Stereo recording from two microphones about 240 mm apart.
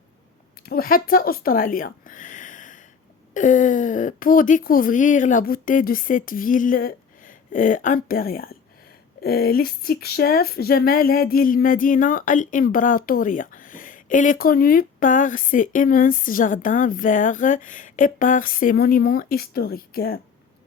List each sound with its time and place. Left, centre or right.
0.6 s speech: left